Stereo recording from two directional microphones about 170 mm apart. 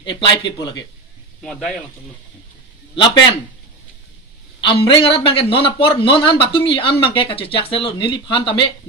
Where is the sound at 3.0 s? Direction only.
30° left (ahead or behind).